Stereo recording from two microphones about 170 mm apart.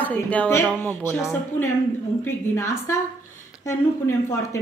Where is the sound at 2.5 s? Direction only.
15° left (ahead or behind).